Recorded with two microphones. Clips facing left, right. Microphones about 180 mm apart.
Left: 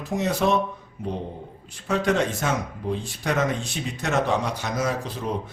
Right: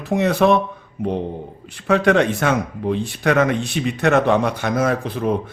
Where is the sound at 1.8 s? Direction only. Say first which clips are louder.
Right 7 dB; 65° right (ahead or behind).